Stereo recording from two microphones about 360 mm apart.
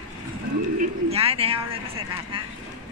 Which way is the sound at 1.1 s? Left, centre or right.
Centre.